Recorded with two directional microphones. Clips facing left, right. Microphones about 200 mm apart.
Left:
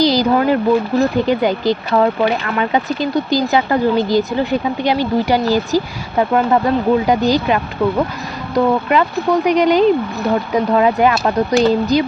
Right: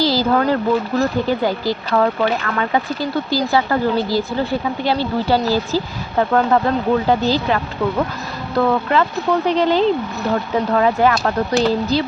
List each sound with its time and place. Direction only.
0.0 s speech: 15° left (ahead or behind)